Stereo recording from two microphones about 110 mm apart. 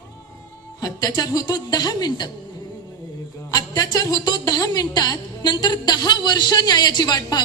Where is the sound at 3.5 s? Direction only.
35° left (ahead or behind).